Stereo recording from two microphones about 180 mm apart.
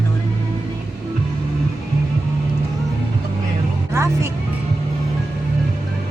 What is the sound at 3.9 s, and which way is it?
Speech, 15° right (ahead or behind).